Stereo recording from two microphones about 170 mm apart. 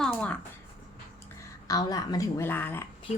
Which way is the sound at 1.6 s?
20° left (ahead or behind).